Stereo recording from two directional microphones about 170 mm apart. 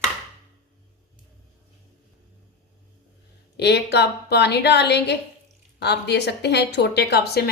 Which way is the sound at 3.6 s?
80° left.